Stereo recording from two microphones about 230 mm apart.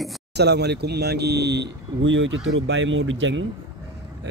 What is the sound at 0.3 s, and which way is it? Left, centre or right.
Speech, right.